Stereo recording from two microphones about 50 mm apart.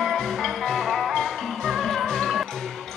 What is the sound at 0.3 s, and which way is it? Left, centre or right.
Music, centre.